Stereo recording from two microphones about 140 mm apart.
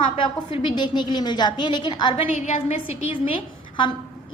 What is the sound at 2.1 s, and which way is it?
A woman's voice, 50° left (ahead or behind).